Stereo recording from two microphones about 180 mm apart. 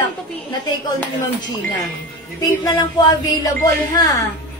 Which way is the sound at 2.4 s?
20° left (ahead or behind).